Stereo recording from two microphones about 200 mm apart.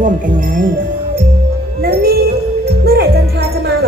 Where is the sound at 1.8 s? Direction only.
50° right (ahead or behind).